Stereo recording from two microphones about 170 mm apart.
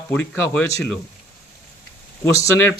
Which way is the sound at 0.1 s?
10° left (ahead or behind).